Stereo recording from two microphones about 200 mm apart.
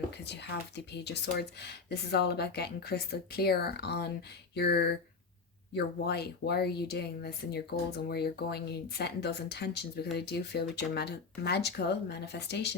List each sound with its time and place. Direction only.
0.3 s speech: 60° left (ahead or behind)